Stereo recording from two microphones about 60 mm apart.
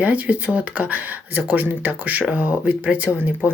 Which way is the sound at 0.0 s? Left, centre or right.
Right.